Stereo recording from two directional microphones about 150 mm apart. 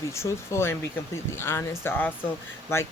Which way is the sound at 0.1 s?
20° left (ahead or behind).